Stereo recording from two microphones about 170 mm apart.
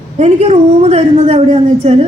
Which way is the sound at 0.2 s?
40° right (ahead or behind).